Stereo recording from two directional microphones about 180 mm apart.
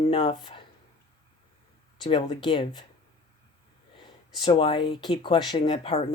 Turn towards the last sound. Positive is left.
turn(degrees=30)  # may be behind; listen again after turning